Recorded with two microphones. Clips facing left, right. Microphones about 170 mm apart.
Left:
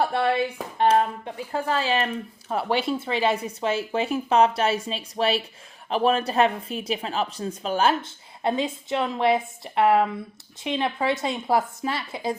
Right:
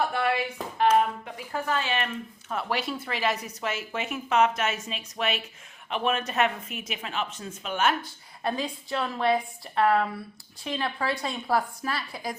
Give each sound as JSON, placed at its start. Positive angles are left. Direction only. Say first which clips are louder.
{"t": 0.0, "sound": "a woman's voice", "louder": "left 4 dB", "side_deg": 30}